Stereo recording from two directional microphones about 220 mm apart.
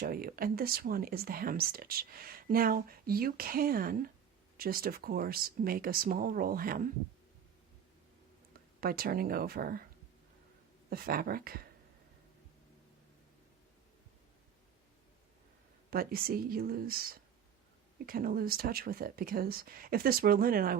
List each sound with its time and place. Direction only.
0.0 s speech: 40° right (ahead or behind)
8.8 s speech: 45° right (ahead or behind)
10.8 s speech: 40° right (ahead or behind)
15.9 s speech: 45° right (ahead or behind)